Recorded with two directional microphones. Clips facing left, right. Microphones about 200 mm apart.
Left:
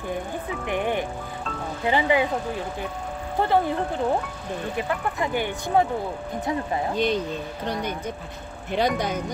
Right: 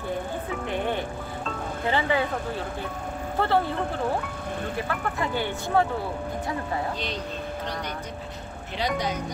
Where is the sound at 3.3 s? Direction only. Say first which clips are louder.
Left 2 dB; 15° left (ahead or behind).